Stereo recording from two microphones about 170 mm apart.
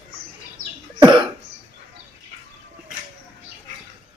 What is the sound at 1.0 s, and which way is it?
Cough, 30° right (ahead or behind).